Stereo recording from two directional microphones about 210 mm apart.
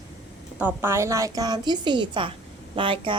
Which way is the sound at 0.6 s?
10° right (ahead or behind).